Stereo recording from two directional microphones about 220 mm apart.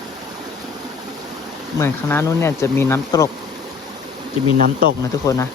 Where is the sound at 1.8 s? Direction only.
10° left (ahead or behind).